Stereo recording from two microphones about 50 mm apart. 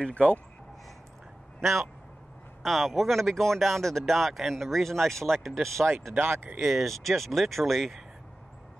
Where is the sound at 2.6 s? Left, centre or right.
Centre.